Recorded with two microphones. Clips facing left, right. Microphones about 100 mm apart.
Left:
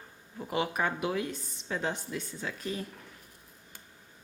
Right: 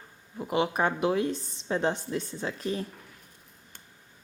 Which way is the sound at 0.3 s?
20° right (ahead or behind).